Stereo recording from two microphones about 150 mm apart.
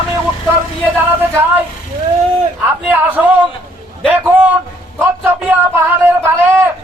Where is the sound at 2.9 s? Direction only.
10° right (ahead or behind).